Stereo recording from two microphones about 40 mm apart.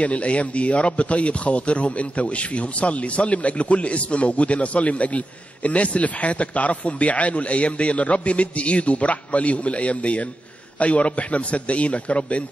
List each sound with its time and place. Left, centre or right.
0.0 s a man's voice: left